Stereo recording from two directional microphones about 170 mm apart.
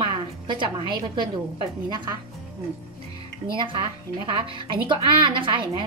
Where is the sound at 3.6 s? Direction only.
30° right (ahead or behind).